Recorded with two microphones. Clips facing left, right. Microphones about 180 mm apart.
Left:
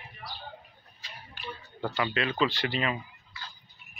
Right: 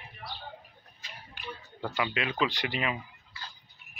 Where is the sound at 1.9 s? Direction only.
10° right (ahead or behind).